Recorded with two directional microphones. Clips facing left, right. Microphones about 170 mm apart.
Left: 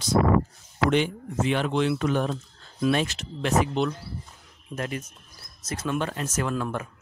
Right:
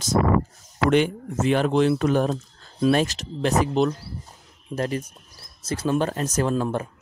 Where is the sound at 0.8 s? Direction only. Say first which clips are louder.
Right 4 dB; 50° right (ahead or behind).